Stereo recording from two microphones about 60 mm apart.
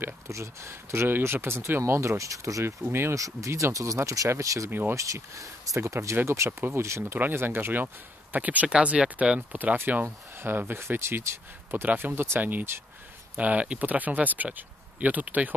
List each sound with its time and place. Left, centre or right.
0.3 s speech: right
2.8 s speech: right
3.2 s speech: right
4.6 s speech: right
4.9 s speech: right
5.8 s speech: right
7.2 s speech: right; by 9.6 s centre
9.8 s speech: right